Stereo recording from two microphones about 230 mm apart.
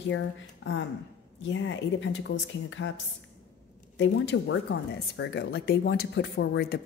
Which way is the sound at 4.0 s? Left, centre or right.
Left.